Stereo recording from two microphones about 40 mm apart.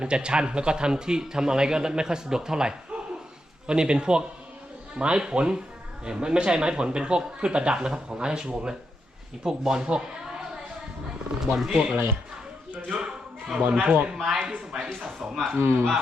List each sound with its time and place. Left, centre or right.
0.0 s a man's voice: right
11.3 s a man's voice: centre
13.8 s a man's voice: right
14.5 s speech: centre
15.5 s speech: right